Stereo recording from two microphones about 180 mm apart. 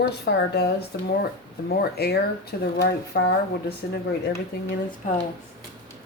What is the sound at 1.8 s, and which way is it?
Speech, 60° left (ahead or behind).